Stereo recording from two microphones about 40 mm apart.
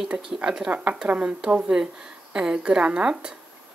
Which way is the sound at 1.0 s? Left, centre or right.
Right.